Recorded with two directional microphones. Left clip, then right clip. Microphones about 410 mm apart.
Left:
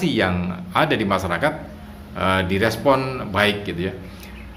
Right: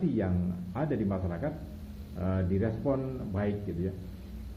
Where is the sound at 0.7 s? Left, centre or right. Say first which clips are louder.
Left 15 dB; centre.